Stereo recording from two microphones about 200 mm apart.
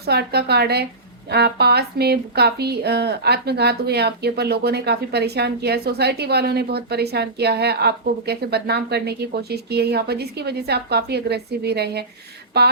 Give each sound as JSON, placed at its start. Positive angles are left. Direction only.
{"t": 0.0, "sound": "speech", "side_deg": -55}